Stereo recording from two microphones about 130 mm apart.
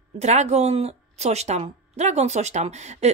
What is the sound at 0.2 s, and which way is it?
Speech, 60° right (ahead or behind).